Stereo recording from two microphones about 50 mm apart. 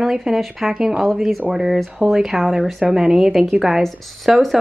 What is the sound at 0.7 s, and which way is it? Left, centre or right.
Speech, centre.